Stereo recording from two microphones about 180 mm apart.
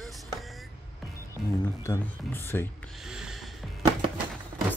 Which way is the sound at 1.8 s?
15° left (ahead or behind).